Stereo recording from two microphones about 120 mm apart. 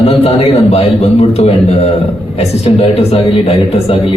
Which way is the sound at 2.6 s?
55° left (ahead or behind).